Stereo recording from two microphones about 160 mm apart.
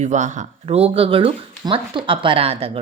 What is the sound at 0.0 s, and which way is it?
A woman's voice, 50° right (ahead or behind).